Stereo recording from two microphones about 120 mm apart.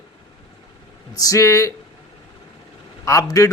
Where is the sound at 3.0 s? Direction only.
25° left (ahead or behind).